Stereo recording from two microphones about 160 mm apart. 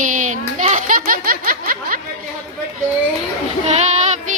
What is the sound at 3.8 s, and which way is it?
Child singing, 45° right (ahead or behind).